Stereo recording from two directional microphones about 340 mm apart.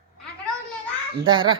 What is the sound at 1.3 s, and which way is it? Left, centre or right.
Speech, centre.